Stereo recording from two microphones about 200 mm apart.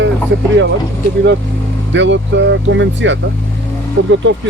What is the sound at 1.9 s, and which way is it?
Speech, 65° right (ahead or behind).